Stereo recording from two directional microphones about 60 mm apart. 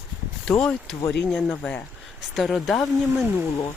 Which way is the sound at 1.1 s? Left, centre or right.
Centre.